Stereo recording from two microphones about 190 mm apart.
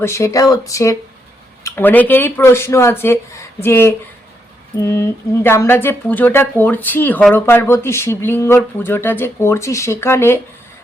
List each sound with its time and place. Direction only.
0.0 s speech: 15° left (ahead or behind)